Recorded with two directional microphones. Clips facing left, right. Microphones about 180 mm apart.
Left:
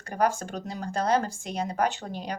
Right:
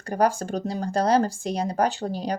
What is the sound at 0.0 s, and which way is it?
Speech, 35° right (ahead or behind).